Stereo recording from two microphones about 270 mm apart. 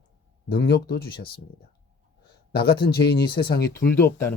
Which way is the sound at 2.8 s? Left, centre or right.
Left.